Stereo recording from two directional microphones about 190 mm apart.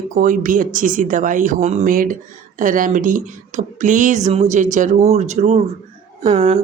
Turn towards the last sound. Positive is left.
turn(degrees=-35)  # may be behind; listen again after turning